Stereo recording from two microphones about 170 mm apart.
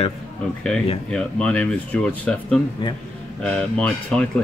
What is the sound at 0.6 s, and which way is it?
Speech, 5° left (ahead or behind).